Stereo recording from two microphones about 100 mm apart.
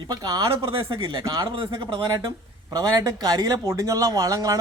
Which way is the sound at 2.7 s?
35° right (ahead or behind).